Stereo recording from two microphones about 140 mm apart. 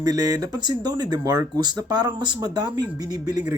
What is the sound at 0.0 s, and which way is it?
Speech, 25° right (ahead or behind).